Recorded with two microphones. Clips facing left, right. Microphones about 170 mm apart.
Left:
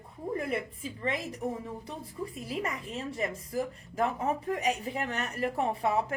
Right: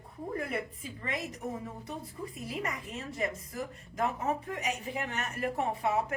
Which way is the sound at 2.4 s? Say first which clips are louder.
Left 1 dB; 30° left (ahead or behind).